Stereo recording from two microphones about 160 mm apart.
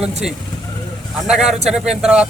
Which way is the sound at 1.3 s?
5° right (ahead or behind).